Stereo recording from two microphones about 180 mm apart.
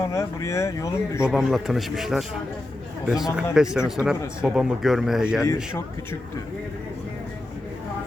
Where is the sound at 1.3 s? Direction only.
Centre (ahead or behind).